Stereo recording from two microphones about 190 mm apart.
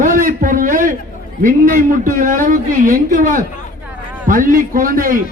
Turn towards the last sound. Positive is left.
turn(degrees=-45)  # may be behind; listen again after turning